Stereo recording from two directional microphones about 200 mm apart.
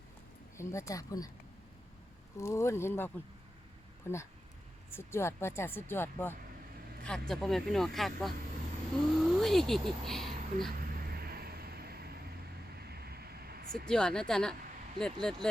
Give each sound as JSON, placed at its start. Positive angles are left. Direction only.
{"t": 0.5, "sound": "speech", "side_deg": 15}
{"t": 2.4, "sound": "speech", "side_deg": 15}
{"t": 11.1, "sound": "vehicle", "side_deg": -50}
{"t": 12.7, "sound": "a sound", "side_deg": -50}
{"t": 13.8, "sound": "speech", "side_deg": 5}